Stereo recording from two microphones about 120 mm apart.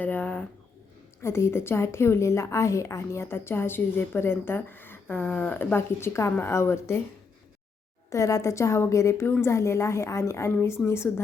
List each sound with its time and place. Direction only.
0.0 s a sound: 15° left (ahead or behind)
1.2 s a woman's voice: 20° left (ahead or behind)
8.1 s a woman's voice: 25° left (ahead or behind)